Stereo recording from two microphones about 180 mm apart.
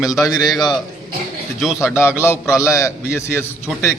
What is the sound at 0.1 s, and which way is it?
Speech, 20° left (ahead or behind).